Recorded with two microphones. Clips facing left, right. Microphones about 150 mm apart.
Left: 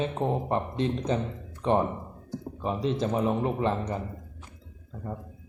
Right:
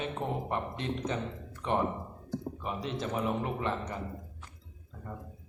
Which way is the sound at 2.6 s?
30° left (ahead or behind).